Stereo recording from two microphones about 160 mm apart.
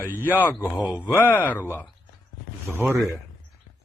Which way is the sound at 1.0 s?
10° left (ahead or behind).